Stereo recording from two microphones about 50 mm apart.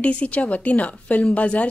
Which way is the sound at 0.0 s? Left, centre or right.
Left.